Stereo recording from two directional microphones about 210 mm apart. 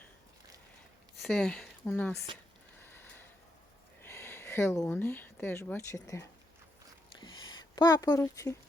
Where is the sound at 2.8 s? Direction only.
10° left (ahead or behind).